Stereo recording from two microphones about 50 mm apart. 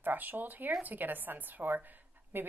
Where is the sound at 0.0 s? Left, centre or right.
Right.